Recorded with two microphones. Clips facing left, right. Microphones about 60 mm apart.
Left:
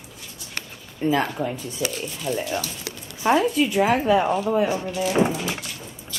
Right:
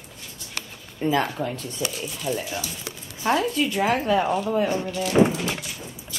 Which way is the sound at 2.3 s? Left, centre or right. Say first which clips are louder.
Left 1 dB; centre.